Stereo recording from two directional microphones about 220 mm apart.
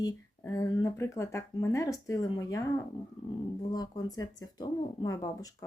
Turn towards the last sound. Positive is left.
turn(degrees=15)  # may be behind; listen again after turning